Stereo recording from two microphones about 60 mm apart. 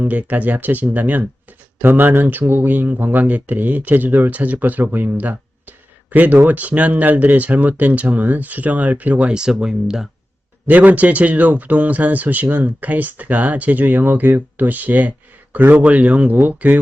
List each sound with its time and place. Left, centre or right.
0.0 s speech: right
9.3 s speech: centre
10.7 s speech: right